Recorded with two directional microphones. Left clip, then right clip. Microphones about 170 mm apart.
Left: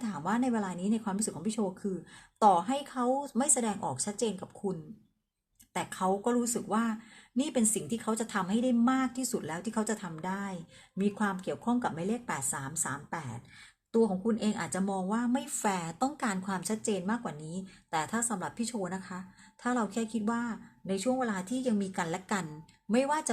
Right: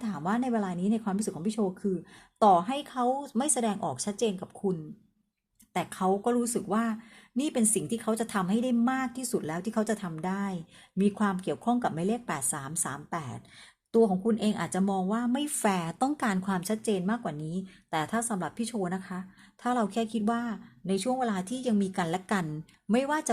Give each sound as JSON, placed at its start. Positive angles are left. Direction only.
{"t": 0.0, "sound": "speech", "side_deg": -40}